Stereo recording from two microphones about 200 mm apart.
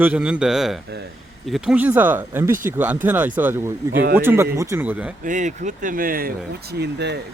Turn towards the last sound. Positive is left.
turn(degrees=-55)  # may be behind; listen again after turning